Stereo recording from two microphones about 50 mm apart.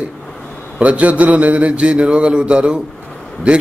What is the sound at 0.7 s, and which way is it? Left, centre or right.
A man's voice, right.